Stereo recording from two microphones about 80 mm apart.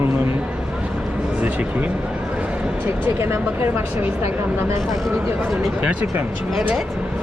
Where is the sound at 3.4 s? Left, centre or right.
Right.